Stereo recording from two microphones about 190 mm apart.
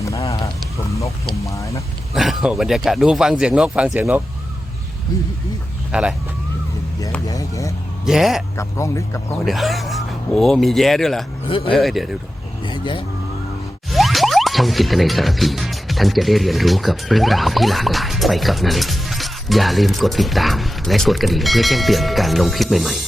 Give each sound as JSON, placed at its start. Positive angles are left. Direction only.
{"t": 0.0, "sound": "a sound", "side_deg": 15}
{"t": 0.9, "sound": "speech", "side_deg": 15}
{"t": 2.1, "sound": "speech", "side_deg": 0}
{"t": 5.9, "sound": "speech", "side_deg": -5}
{"t": 7.3, "sound": "speech", "side_deg": 15}
{"t": 8.0, "sound": "speech", "side_deg": 0}
{"t": 8.5, "sound": "speech", "side_deg": 15}
{"t": 9.4, "sound": "speech", "side_deg": 0}
{"t": 11.4, "sound": "speech", "side_deg": 25}
{"t": 11.7, "sound": "speech", "side_deg": 0}
{"t": 12.6, "sound": "speech", "side_deg": 25}
{"t": 13.9, "sound": "speech", "side_deg": 0}